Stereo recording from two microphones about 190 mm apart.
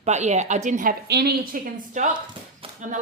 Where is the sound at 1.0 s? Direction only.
60° right (ahead or behind).